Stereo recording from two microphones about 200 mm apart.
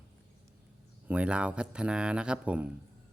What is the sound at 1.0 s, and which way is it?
Speech, 5° right (ahead or behind).